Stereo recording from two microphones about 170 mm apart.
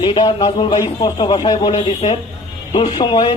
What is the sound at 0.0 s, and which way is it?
Speech, 30° left (ahead or behind).